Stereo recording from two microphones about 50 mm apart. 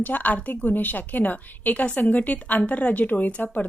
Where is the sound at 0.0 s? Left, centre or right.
Left.